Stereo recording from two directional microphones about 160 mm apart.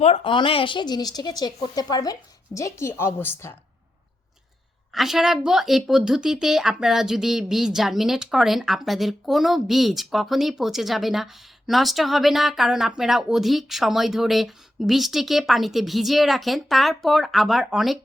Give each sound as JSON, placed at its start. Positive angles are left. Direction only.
{"t": 0.0, "sound": "speech", "side_deg": 35}
{"t": 4.9, "sound": "speech", "side_deg": 0}